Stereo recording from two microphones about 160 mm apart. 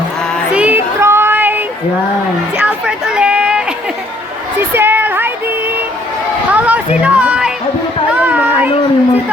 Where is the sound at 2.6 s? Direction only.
10° right (ahead or behind).